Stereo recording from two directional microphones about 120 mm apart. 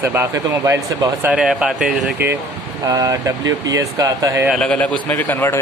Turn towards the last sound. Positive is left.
turn(degrees=15)  # may be behind; listen again after turning